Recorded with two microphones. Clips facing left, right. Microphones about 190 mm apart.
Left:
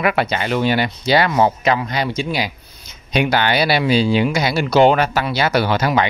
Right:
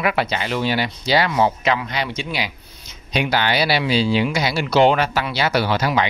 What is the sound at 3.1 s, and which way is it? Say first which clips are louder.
Speech: left 3 dB; 50° left (ahead or behind).